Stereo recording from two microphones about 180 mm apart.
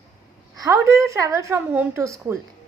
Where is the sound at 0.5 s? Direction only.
20° right (ahead or behind).